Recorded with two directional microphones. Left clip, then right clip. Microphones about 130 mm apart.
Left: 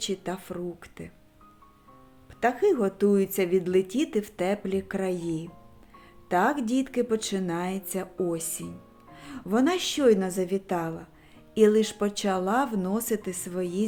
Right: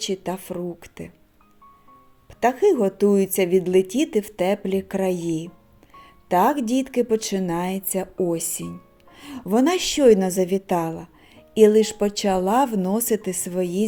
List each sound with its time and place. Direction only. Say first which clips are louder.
0.0 s speech: right 5 dB; 25° right (ahead or behind)
2.4 s a woman's voice: right 5 dB; 25° right (ahead or behind)